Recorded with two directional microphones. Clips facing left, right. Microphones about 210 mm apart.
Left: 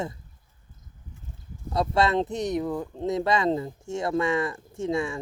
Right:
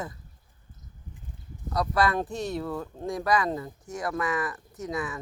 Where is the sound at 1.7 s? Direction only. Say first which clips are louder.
Left 2 dB; 25° left (ahead or behind).